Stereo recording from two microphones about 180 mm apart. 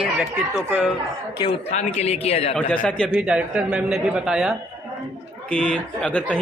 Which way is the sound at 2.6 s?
5° left (ahead or behind).